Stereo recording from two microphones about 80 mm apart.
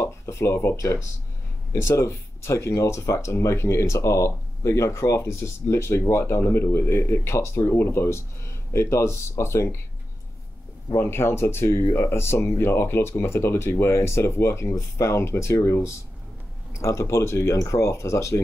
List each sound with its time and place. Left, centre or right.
0.0 s speech: left
11.0 s speech: left